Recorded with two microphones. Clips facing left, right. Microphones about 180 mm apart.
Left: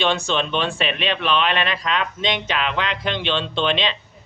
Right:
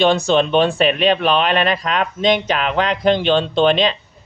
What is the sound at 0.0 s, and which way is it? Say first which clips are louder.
Speech: right 7 dB; 40° right (ahead or behind).